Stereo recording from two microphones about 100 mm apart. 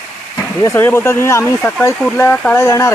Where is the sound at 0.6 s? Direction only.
25° left (ahead or behind).